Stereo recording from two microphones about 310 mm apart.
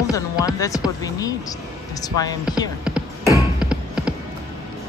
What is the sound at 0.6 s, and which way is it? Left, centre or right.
Speech, centre.